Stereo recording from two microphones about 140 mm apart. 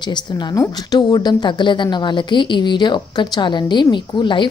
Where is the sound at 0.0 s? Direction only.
30° left (ahead or behind).